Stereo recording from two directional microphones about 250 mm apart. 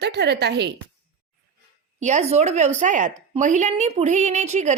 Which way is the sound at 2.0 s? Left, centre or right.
Right.